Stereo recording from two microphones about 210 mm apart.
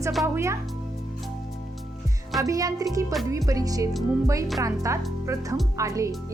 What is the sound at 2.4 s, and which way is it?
Speech, 15° right (ahead or behind).